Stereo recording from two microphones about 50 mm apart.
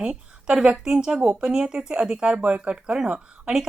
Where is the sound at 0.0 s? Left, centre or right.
Right.